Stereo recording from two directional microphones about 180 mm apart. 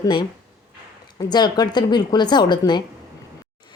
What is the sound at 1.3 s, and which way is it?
Speech, 25° left (ahead or behind).